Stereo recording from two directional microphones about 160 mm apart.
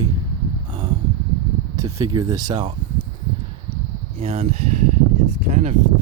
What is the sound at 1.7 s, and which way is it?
Speech, 25° right (ahead or behind).